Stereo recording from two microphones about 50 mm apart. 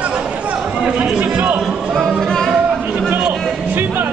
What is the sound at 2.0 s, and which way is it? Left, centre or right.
Music, centre.